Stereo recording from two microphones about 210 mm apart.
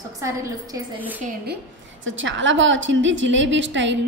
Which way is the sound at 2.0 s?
65° right (ahead or behind).